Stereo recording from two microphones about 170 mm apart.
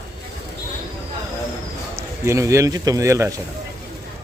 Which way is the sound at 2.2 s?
15° right (ahead or behind).